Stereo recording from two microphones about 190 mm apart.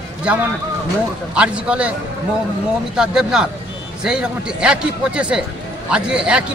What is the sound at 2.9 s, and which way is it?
A man's voice, 5° right (ahead or behind).